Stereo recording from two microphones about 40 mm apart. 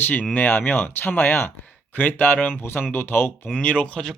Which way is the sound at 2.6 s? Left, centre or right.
Left.